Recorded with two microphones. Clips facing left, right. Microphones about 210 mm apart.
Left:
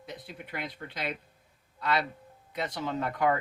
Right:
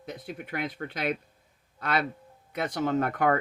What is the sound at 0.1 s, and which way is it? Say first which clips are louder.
Speech: right 5 dB; 50° right (ahead or behind).